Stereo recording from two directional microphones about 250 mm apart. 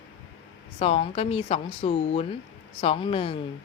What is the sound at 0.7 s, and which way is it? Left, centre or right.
A woman's voice, left.